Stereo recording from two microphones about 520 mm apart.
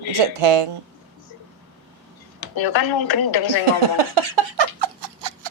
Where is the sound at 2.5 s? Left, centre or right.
Left.